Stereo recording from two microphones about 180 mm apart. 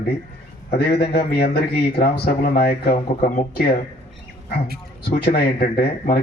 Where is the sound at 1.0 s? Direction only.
60° left (ahead or behind).